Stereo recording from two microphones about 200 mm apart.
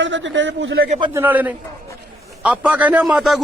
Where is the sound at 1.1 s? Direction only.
10° right (ahead or behind).